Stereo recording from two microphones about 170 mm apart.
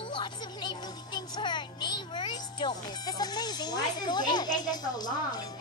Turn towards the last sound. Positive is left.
turn(degrees=25)  # may be behind; listen again after turning